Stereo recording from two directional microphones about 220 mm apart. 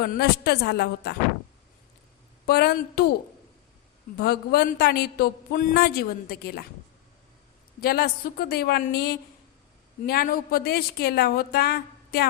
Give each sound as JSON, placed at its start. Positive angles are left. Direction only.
{"t": 0.0, "sound": "a man's voice", "side_deg": 45}
{"t": 2.5, "sound": "a man's voice", "side_deg": 45}
{"t": 4.2, "sound": "a man's voice", "side_deg": 45}
{"t": 7.8, "sound": "a man's voice", "side_deg": 45}